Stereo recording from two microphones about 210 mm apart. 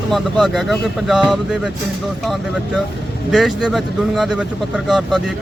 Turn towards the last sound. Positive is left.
turn(degrees=0)  # may be behind; listen again after turning